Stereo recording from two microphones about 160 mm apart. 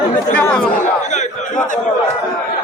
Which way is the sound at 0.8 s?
50° left (ahead or behind).